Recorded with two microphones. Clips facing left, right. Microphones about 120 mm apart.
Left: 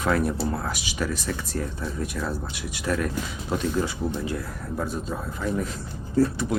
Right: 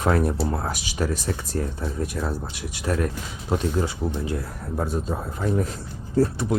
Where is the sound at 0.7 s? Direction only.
40° right (ahead or behind).